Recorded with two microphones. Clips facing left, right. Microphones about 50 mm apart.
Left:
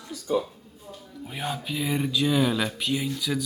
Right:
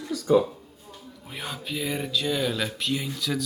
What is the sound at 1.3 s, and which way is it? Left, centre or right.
Speech, centre.